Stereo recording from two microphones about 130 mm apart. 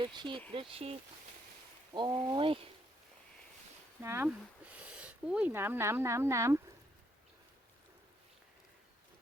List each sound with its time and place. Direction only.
0.0 s speech: 35° right (ahead or behind)
1.9 s speech: 35° right (ahead or behind)
4.0 s speech: 20° right (ahead or behind)
4.3 s speech: 10° right (ahead or behind)